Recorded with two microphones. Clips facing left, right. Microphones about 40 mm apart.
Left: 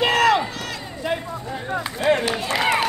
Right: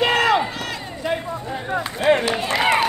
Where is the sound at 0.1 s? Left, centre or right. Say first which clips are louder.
Even; right.